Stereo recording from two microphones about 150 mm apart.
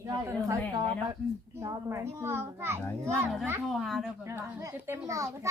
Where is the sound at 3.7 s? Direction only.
Centre (ahead or behind).